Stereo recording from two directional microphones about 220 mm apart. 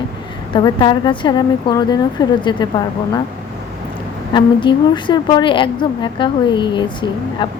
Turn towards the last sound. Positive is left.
turn(degrees=20)  # may be behind; listen again after turning